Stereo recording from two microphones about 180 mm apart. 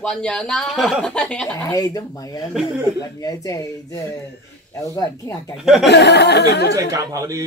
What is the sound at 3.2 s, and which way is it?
Speech, 20° left (ahead or behind).